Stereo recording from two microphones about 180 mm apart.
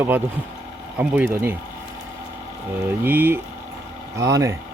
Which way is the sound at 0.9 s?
10° right (ahead or behind).